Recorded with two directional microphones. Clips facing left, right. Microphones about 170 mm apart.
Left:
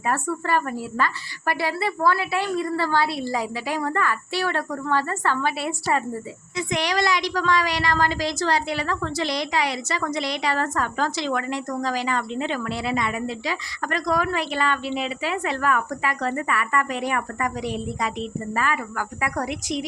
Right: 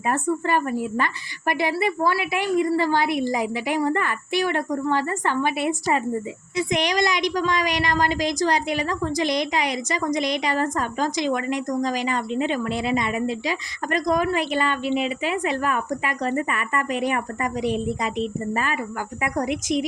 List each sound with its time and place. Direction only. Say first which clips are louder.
0.0 s a woman's voice: right 2 dB; 20° right (ahead or behind)